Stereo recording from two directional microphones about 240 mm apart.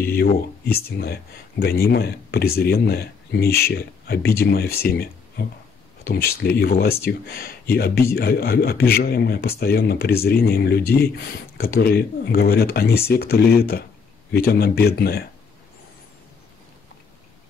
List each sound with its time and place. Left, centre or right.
0.0 s speech: left